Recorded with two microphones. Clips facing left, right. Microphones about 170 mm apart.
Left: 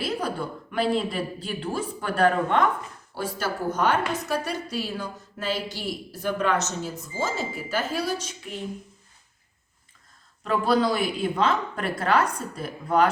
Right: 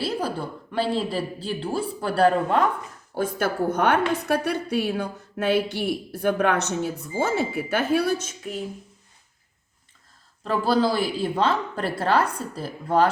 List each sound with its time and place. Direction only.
0.0 s speech: 30° right (ahead or behind)
3.2 s a woman's voice: 55° right (ahead or behind)
10.4 s speech: 30° right (ahead or behind)